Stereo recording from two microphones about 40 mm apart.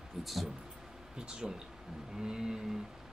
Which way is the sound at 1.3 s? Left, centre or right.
Right.